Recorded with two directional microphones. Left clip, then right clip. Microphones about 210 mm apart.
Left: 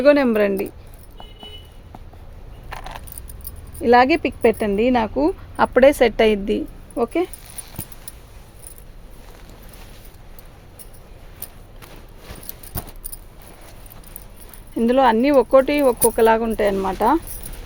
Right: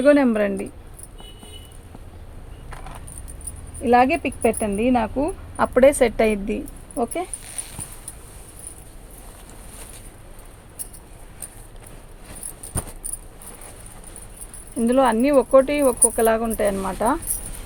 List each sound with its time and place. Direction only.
0.0 s speech: 50° left (ahead or behind)
3.8 s speech: 50° left (ahead or behind)
14.8 s speech: 50° left (ahead or behind)